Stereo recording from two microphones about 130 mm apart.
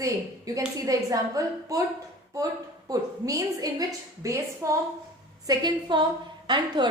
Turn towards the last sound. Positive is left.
turn(degrees=-35)  # may be behind; listen again after turning